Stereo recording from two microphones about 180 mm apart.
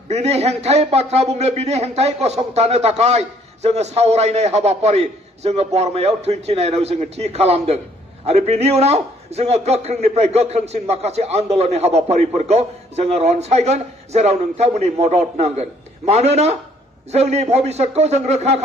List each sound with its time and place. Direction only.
0.1 s a man's voice: 35° right (ahead or behind)